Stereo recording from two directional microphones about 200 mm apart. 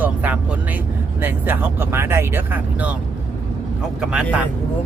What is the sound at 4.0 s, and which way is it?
Speech, 5° right (ahead or behind).